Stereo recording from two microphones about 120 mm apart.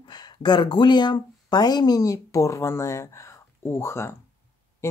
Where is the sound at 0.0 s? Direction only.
40° left (ahead or behind).